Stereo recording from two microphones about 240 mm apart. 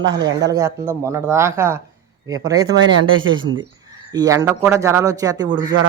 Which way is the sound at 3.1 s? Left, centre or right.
Right.